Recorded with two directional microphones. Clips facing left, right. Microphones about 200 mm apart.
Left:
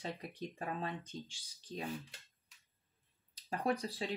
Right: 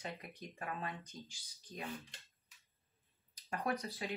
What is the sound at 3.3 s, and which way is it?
Speech, 30° left (ahead or behind).